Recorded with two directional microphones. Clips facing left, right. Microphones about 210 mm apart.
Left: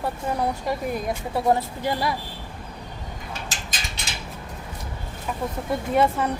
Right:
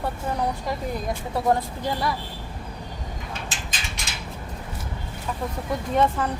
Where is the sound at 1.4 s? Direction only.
5° left (ahead or behind).